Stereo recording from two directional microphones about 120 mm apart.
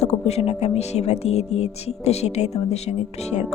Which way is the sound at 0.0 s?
65° left (ahead or behind).